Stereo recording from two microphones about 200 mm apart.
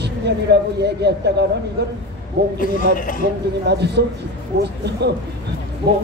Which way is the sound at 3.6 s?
55° right (ahead or behind).